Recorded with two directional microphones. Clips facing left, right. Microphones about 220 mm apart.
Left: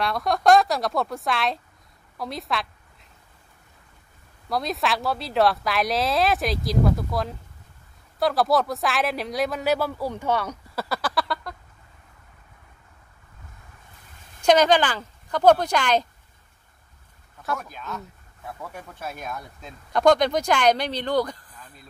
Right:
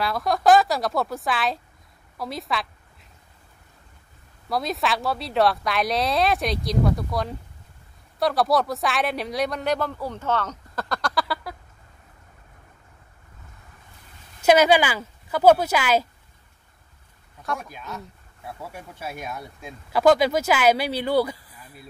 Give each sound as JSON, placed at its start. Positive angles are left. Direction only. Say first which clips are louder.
{"t": 0.0, "sound": "speech", "louder": "even", "side_deg": 0}
{"t": 2.1, "sound": "a sound", "louder": "even", "side_deg": 0}
{"t": 4.5, "sound": "speech", "louder": "even", "side_deg": 0}
{"t": 14.4, "sound": "speech", "louder": "right 1 dB", "side_deg": -5}
{"t": 17.6, "sound": "speech", "louder": "left 1 dB", "side_deg": -10}